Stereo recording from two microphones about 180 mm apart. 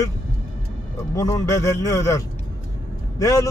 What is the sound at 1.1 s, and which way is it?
A man's voice, 20° left (ahead or behind).